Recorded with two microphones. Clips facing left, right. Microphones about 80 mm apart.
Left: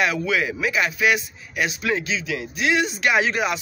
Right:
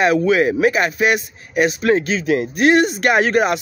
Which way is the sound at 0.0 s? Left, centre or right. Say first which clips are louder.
Right 8 dB; right.